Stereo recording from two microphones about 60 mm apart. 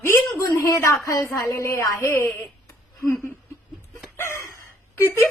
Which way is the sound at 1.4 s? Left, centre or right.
Left.